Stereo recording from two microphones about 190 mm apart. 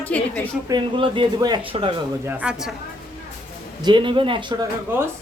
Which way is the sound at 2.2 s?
5° right (ahead or behind).